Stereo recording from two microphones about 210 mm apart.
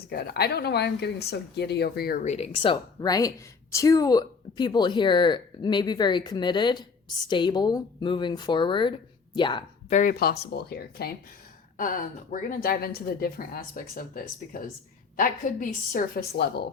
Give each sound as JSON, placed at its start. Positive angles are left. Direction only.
{"t": 0.1, "sound": "speech", "side_deg": 45}
{"t": 9.9, "sound": "a woman's voice", "side_deg": 40}